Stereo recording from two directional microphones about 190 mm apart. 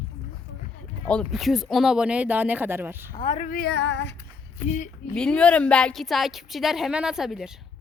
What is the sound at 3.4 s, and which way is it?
Female singing, 50° left (ahead or behind).